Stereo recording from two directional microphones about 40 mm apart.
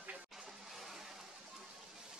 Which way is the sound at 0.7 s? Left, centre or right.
Centre.